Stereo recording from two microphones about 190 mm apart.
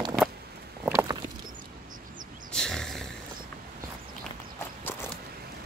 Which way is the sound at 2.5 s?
5° left (ahead or behind).